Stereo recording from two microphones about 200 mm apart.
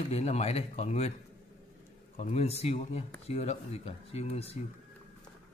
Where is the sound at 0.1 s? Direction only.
30° left (ahead or behind).